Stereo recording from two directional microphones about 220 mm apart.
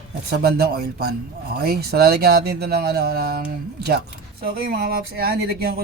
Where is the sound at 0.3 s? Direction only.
45° right (ahead or behind).